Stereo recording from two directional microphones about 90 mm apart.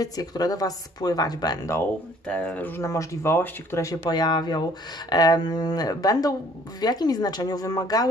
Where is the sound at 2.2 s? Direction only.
15° left (ahead or behind).